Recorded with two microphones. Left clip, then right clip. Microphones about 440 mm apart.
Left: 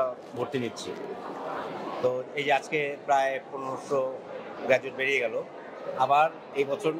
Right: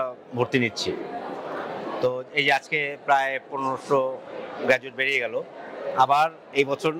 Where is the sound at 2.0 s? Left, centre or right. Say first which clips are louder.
Right 4 dB; right.